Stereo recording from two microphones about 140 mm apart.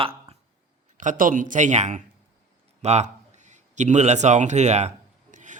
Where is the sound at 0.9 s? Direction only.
65° right (ahead or behind).